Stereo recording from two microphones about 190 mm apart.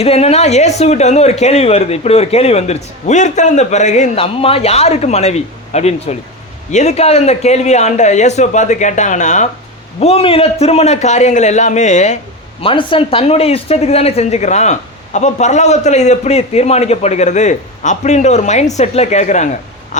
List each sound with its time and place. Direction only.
0.0 s speech: 35° left (ahead or behind)
12.6 s speech: 30° left (ahead or behind)